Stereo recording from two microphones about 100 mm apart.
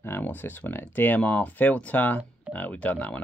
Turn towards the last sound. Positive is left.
turn(degrees=15)  # may be behind; listen again after turning